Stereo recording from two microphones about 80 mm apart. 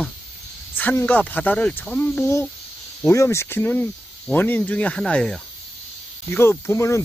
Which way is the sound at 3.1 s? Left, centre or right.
Left.